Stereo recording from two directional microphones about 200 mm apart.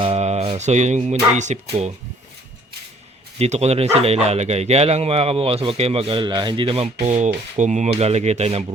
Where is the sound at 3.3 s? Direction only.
30° right (ahead or behind).